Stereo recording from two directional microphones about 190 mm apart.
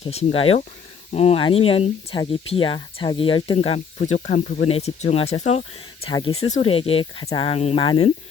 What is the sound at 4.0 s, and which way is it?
Speech, 40° left (ahead or behind).